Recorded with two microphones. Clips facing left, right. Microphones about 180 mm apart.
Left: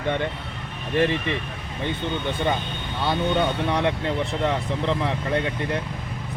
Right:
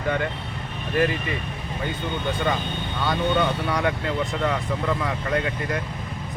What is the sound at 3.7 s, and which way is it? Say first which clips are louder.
Speech: left 1 dB; 30° left (ahead or behind).